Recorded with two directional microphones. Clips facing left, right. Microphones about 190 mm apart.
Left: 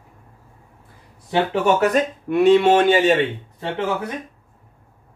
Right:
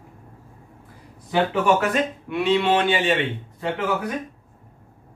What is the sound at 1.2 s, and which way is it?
Speech, 35° left (ahead or behind).